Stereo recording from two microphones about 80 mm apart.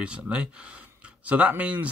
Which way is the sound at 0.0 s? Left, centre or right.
Centre.